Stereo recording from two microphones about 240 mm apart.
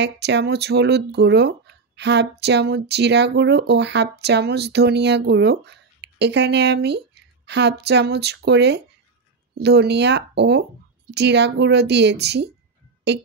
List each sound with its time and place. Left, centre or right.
0.0 s speech: right